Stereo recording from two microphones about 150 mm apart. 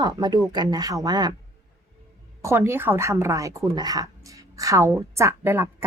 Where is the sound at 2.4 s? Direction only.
15° right (ahead or behind).